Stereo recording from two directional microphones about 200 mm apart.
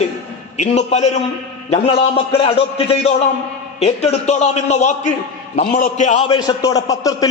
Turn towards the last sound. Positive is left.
turn(degrees=15)  # may be behind; listen again after turning